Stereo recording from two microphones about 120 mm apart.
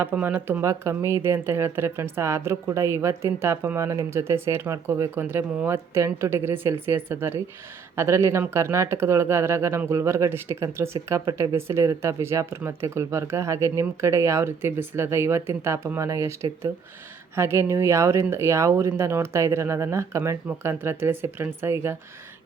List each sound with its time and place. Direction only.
0.0 s speech: 15° right (ahead or behind)